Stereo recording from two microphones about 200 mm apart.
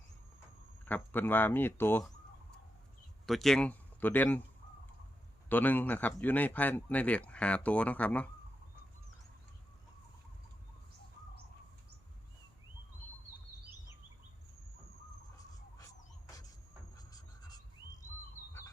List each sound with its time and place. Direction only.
0.9 s speech: 10° left (ahead or behind)
3.2 s speech: centre (ahead or behind)
5.5 s speech: 10° left (ahead or behind)
17.1 s a sound: 20° left (ahead or behind)